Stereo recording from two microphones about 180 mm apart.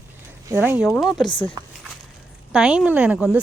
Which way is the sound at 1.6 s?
20° right (ahead or behind).